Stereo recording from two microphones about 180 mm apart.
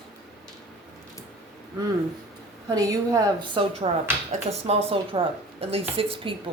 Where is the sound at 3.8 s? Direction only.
35° right (ahead or behind).